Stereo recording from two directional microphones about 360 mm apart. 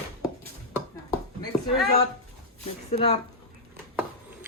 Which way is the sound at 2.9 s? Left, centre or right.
Centre.